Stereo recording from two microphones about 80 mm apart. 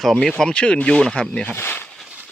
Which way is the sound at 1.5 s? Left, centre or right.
Left.